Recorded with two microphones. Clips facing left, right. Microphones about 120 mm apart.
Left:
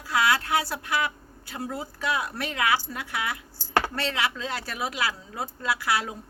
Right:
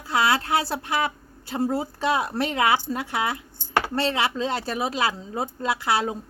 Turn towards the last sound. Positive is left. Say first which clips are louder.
# right 3 dB
turn(degrees=-25)  # may be behind; listen again after turning